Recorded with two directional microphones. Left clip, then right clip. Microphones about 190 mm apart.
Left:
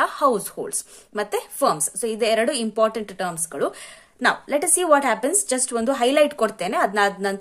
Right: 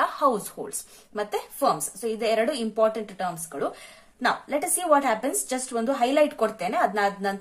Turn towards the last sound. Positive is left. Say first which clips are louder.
# left 3 dB
turn(degrees=40)  # may be behind; listen again after turning